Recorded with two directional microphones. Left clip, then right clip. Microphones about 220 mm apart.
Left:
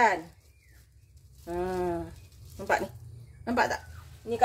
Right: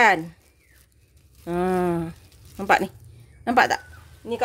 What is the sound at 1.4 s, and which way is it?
Speech, 45° right (ahead or behind).